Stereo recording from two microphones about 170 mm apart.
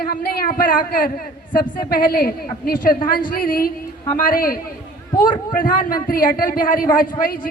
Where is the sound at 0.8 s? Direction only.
60° left (ahead or behind).